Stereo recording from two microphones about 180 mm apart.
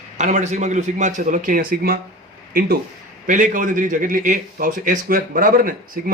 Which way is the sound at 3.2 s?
45° right (ahead or behind).